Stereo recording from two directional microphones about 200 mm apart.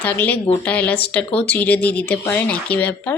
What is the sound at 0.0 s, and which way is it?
A woman's voice, 10° left (ahead or behind).